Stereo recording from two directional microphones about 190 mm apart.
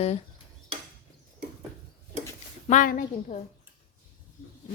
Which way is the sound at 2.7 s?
40° left (ahead or behind).